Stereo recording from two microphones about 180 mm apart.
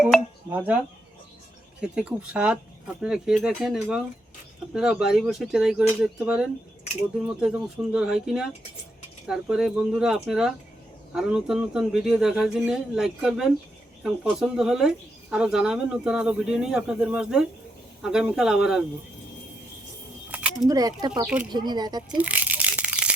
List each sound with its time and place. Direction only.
0.0 s telephone dialing: 10° right (ahead or behind)
1.8 s speech: 5° right (ahead or behind)
20.3 s a sound: 5° right (ahead or behind)
20.7 s speech: 20° right (ahead or behind)
22.2 s rattle: 10° right (ahead or behind)